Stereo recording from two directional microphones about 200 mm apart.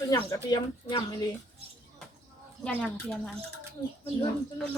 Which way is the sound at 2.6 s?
5° left (ahead or behind).